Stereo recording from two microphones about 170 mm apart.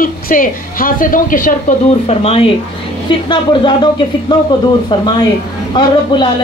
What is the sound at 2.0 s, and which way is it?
A man's voice, 35° left (ahead or behind).